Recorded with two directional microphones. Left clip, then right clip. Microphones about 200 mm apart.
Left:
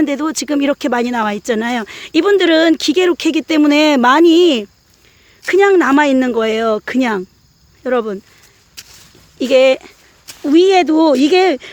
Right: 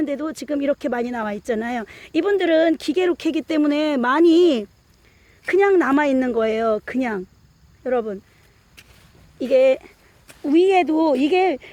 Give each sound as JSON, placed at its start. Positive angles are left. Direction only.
{"t": 0.0, "sound": "speech", "side_deg": 30}
{"t": 8.8, "sound": "a sound", "side_deg": 50}
{"t": 9.4, "sound": "speech", "side_deg": 30}